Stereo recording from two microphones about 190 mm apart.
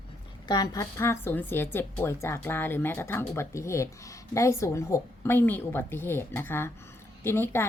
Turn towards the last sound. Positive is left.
turn(degrees=10)  # may be behind; listen again after turning